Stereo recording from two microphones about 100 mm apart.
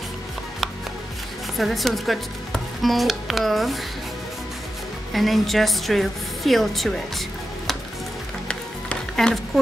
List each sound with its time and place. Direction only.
1.6 s speech: centre (ahead or behind)
5.1 s a woman's voice: centre (ahead or behind)
8.5 s music: 10° left (ahead or behind)